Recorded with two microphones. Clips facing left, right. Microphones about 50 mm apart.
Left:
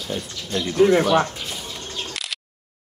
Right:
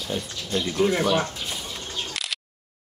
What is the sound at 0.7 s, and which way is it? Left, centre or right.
Speech, left.